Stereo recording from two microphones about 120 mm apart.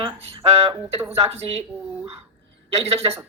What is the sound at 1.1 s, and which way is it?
Speech, 60° right (ahead or behind).